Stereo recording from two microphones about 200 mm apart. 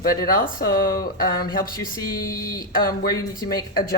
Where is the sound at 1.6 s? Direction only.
20° left (ahead or behind).